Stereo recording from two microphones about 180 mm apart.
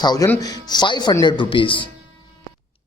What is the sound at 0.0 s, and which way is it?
Speech, 20° left (ahead or behind).